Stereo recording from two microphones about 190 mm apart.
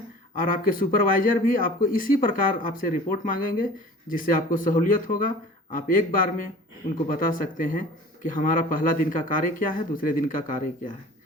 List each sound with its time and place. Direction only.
0.3 s speech: 45° left (ahead or behind)